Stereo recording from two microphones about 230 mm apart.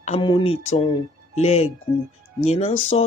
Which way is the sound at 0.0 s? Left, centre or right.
Left.